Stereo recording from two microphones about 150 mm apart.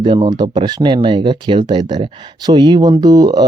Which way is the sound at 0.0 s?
30° right (ahead or behind).